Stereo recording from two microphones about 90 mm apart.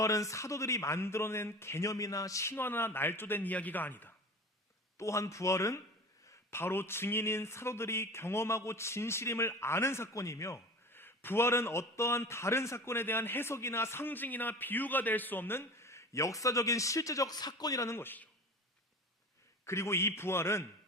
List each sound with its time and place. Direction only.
0.0 s speech: 35° left (ahead or behind); by 4.1 s 20° left (ahead or behind)
4.9 s speech: 35° left (ahead or behind)
19.6 s speech: 30° left (ahead or behind)